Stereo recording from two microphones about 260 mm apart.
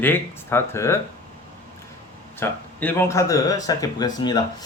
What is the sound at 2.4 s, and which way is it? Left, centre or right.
Speech, centre.